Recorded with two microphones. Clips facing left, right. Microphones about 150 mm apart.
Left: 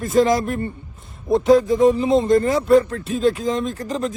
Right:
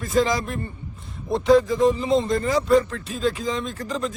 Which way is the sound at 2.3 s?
50° left (ahead or behind).